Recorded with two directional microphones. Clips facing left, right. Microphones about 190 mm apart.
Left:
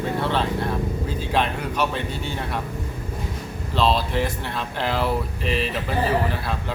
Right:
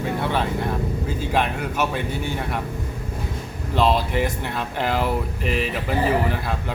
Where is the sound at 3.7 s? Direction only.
15° right (ahead or behind).